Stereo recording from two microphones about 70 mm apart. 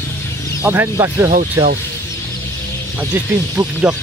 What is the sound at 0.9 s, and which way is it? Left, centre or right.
Speech, right.